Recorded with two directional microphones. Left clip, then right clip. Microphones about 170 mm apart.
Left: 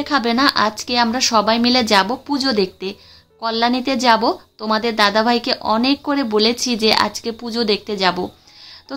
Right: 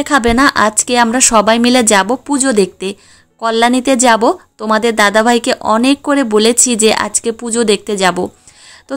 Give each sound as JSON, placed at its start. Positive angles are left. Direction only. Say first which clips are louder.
{"t": 0.0, "sound": "speech", "louder": "right 6 dB", "side_deg": -45}